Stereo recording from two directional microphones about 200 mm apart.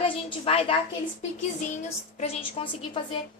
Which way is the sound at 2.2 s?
30° left (ahead or behind).